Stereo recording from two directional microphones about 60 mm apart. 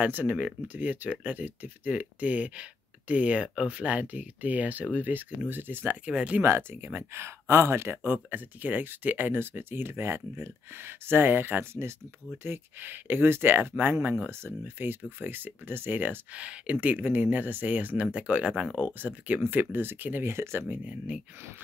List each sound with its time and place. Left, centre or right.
0.0 s speech: right
6.0 s speech: right
6.4 s speech: right
16.3 s speech: right
20.2 s speech: right
20.6 s speech: right